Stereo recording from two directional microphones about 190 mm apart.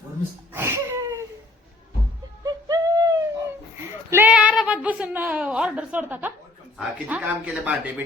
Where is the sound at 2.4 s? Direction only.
20° right (ahead or behind).